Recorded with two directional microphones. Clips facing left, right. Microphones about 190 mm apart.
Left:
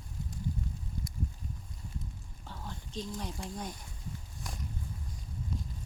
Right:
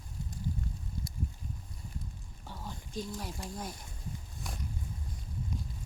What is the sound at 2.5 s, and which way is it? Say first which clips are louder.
Speech: right 1 dB; 10° right (ahead or behind).